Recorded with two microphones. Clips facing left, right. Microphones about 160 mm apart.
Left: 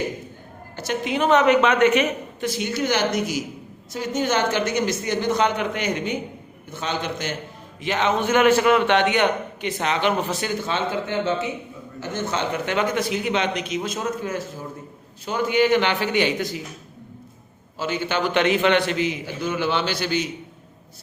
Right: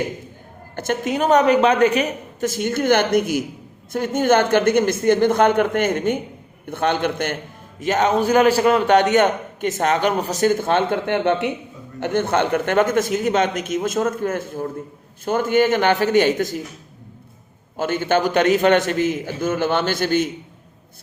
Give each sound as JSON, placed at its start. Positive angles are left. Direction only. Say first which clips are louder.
{"t": 0.8, "sound": "a man's voice", "louder": "right 2 dB", "side_deg": -45}
{"t": 7.8, "sound": "a man's voice", "louder": "right 4 dB", "side_deg": -45}
{"t": 17.7, "sound": "a man's voice", "louder": "right 5 dB", "side_deg": -50}